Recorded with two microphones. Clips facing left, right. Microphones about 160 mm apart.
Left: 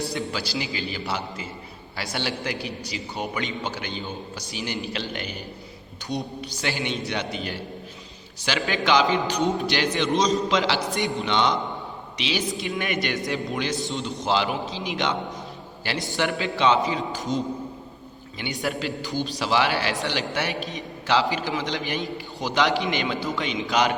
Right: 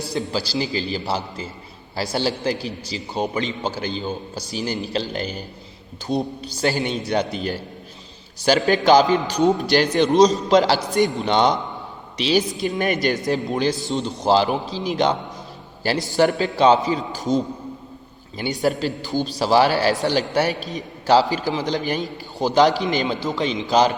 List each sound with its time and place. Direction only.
0.1 s a man's voice: 35° right (ahead or behind)